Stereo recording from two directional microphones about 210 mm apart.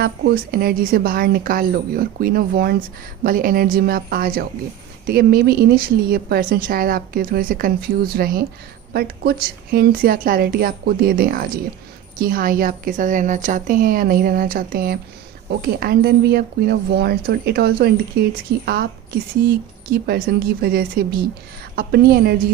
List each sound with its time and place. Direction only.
0.0 s a woman's voice: 50° right (ahead or behind)
19.4 s a woman's voice: 50° right (ahead or behind)